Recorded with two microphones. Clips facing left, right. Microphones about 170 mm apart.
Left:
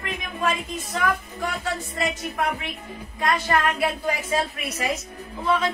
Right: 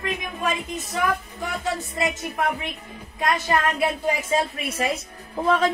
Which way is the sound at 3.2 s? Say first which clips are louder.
Even; 20° right (ahead or behind).